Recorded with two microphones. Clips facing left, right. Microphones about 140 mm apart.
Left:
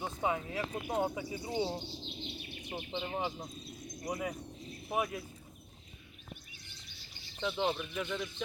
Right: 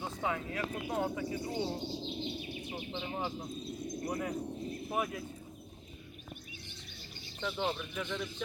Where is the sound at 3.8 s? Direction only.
60° right (ahead or behind).